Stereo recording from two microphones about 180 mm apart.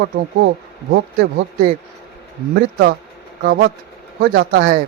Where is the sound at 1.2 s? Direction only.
50° right (ahead or behind).